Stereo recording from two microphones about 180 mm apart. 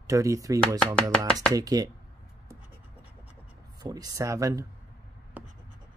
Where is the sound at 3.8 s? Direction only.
20° right (ahead or behind).